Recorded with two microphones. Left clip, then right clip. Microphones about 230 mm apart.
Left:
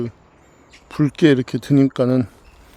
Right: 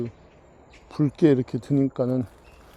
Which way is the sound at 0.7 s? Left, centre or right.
Centre.